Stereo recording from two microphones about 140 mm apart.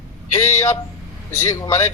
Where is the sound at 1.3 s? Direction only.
20° left (ahead or behind).